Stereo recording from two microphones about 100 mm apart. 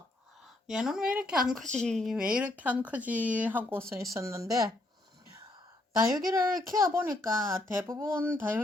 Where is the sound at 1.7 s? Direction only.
5° left (ahead or behind).